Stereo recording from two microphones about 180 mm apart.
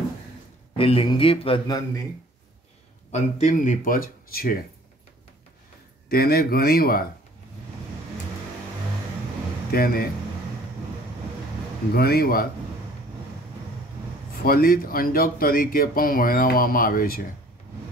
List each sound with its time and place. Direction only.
0.7 s speech: 30° left (ahead or behind)
3.1 s speech: 40° left (ahead or behind); by 4.6 s 55° left (ahead or behind)
6.0 s speech: 55° left (ahead or behind)
9.7 s speech: 55° left (ahead or behind)
11.9 s speech: 60° left (ahead or behind)
14.4 s speech: 55° left (ahead or behind)